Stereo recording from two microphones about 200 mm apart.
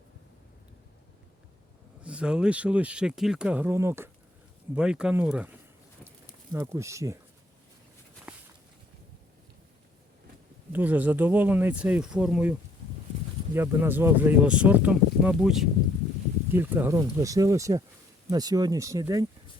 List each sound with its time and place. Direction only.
2.0 s speech: 5° right (ahead or behind)
6.1 s a sound: 15° right (ahead or behind)
10.7 s speech: 10° right (ahead or behind)